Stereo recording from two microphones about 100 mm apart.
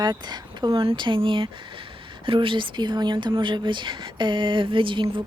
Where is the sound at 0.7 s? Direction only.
65° right (ahead or behind).